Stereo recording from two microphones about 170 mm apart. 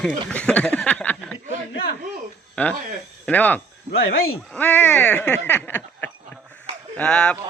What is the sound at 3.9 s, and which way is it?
Speech, 65° left (ahead or behind).